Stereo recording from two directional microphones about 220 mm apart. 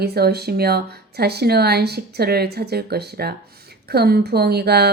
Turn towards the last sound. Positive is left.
turn(degrees=-45)  # may be behind; listen again after turning